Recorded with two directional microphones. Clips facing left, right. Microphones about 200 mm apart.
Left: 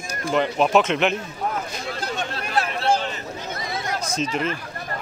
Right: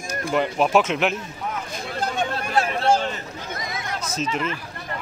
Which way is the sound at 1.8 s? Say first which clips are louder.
Right 7 dB; 50° right (ahead or behind).